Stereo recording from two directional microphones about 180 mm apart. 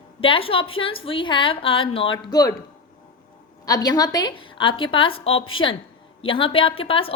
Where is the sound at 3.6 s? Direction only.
20° left (ahead or behind).